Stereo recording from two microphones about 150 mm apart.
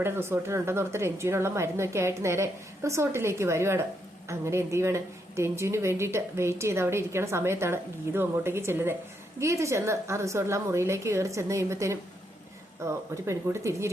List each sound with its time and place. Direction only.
0.0 s a woman's voice: 15° right (ahead or behind)